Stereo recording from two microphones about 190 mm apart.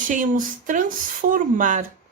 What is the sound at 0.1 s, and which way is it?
Speech, 45° right (ahead or behind).